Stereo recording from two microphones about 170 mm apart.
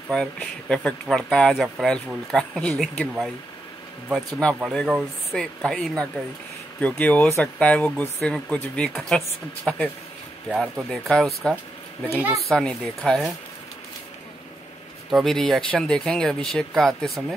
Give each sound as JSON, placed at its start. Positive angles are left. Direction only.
{"t": 0.1, "sound": "speech", "side_deg": 5}
{"t": 12.1, "sound": "speech", "side_deg": -10}
{"t": 12.4, "sound": "speech", "side_deg": 5}
{"t": 15.0, "sound": "speech", "side_deg": 0}